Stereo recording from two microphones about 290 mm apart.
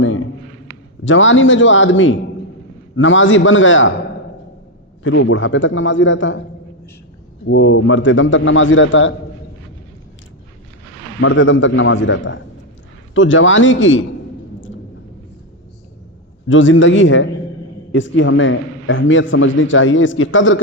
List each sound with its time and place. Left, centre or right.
1.0 s a man's voice: left
5.0 s a man's voice: left
7.4 s a man's voice: left
11.2 s a man's voice: left
16.5 s a man's voice: left